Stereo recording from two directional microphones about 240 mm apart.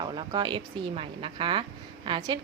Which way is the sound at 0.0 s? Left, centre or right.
Centre.